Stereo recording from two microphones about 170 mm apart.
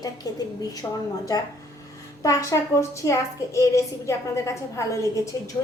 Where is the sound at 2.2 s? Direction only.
20° left (ahead or behind).